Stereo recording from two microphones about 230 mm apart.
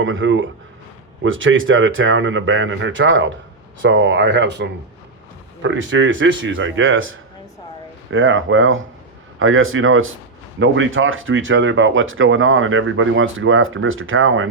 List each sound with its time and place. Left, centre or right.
0.0 s speech: right